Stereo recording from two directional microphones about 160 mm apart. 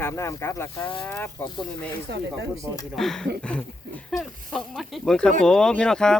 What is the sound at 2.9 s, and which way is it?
Speech, centre (ahead or behind).